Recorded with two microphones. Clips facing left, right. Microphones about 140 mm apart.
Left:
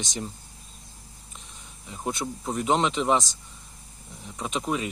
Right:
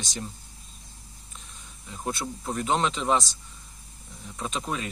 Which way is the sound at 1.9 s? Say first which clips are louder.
Left 1 dB; 15° left (ahead or behind).